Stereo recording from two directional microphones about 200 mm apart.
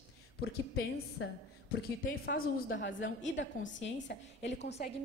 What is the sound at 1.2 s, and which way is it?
Speech, 65° left (ahead or behind).